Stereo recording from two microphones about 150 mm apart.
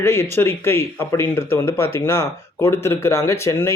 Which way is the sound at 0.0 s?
15° left (ahead or behind).